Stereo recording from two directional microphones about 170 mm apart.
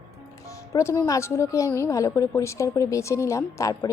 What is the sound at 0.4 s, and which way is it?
A woman's voice, 20° left (ahead or behind).